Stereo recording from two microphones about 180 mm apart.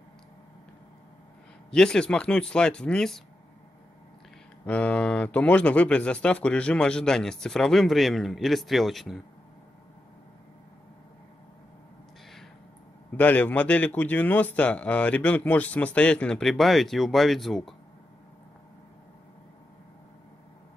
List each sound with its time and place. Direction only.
1.7 s speech: 5° left (ahead or behind)
4.6 s speech: 10° left (ahead or behind)
13.1 s a man's voice: 10° left (ahead or behind)